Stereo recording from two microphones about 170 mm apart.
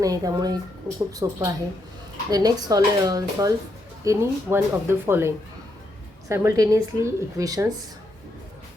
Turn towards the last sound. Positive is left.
turn(degrees=-20)  # may be behind; listen again after turning